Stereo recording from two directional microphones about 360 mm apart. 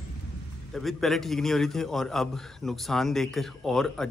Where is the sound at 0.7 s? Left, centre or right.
Centre.